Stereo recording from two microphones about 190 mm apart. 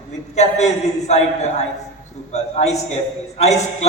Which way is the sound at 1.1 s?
35° left (ahead or behind).